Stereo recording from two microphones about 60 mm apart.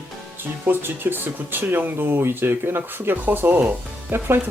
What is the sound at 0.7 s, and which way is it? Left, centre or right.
Speech, right.